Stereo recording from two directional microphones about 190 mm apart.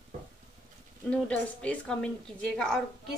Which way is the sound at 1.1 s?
5° left (ahead or behind).